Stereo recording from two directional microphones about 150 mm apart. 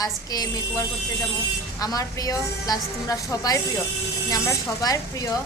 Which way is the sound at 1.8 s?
25° left (ahead or behind).